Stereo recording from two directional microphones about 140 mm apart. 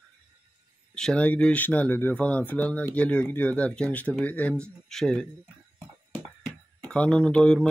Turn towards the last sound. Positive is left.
turn(degrees=5)  # may be behind; listen again after turning